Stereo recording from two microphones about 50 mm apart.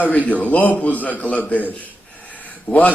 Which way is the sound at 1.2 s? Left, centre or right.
Left.